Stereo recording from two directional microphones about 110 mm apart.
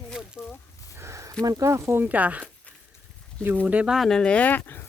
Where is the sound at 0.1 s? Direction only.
5° right (ahead or behind).